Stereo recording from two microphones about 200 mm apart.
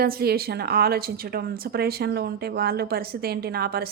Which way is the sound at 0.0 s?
50° right (ahead or behind).